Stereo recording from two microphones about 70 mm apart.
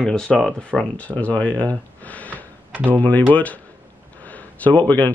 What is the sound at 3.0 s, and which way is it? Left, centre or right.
Speech, left.